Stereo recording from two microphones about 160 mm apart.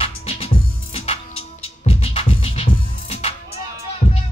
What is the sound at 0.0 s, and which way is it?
Music, 35° left (ahead or behind).